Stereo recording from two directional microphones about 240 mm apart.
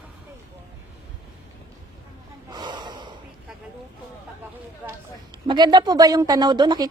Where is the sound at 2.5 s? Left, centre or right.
Centre.